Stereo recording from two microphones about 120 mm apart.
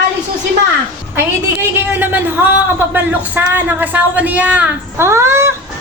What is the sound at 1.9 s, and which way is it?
Speech, 15° right (ahead or behind).